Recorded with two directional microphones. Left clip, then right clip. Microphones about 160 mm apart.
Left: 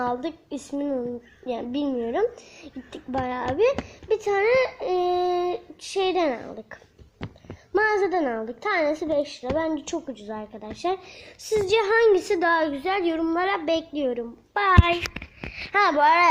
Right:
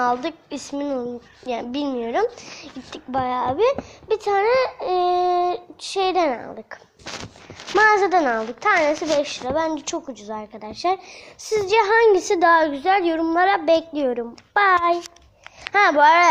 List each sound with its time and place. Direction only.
0.0 s a woman's voice: 10° left (ahead or behind)
7.8 s a child's voice: 5° left (ahead or behind); by 16.3 s 20° right (ahead or behind)